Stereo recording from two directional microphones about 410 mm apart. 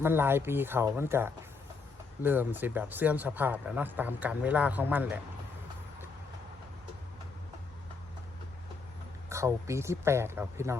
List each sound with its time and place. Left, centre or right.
0.0 s speech: centre
9.3 s speech: centre